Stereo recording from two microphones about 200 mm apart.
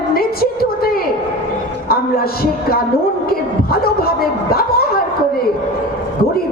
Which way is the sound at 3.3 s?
50° left (ahead or behind).